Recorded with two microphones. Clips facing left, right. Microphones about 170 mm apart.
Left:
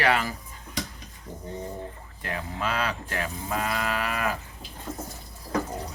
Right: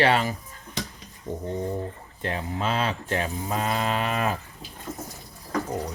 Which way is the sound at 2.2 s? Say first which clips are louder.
Right 3 dB; 25° right (ahead or behind).